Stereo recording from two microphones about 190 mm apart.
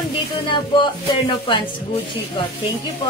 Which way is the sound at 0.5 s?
25° left (ahead or behind).